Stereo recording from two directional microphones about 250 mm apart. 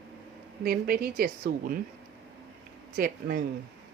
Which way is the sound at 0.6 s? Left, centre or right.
Right.